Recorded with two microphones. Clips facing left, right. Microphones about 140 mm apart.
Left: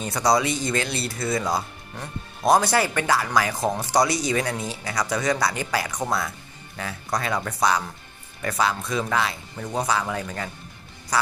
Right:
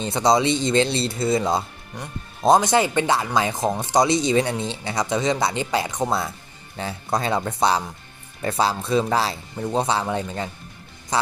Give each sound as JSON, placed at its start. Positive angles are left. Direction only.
{"t": 0.0, "sound": "speech", "side_deg": -25}